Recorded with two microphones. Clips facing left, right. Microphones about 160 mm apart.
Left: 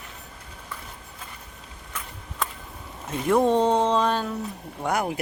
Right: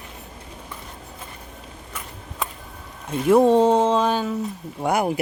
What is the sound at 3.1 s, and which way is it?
Speech, 5° right (ahead or behind).